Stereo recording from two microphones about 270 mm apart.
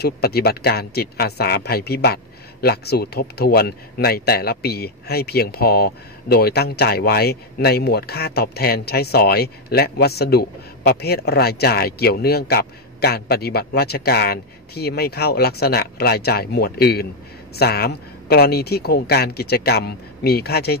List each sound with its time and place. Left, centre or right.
0.0 s speech: left